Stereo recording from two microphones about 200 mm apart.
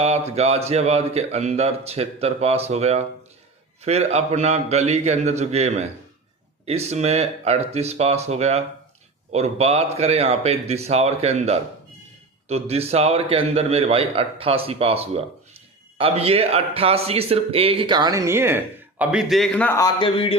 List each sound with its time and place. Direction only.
0.0 s a man's voice: 30° right (ahead or behind); by 19.9 s 10° left (ahead or behind)
20.0 s speech: 25° left (ahead or behind)